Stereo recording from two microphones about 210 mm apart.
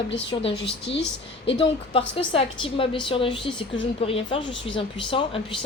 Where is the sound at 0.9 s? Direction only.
60° left (ahead or behind).